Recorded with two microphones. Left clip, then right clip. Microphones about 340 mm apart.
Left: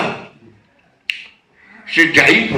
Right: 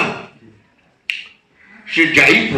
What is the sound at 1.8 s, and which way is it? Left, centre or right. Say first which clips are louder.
Speech: even; left.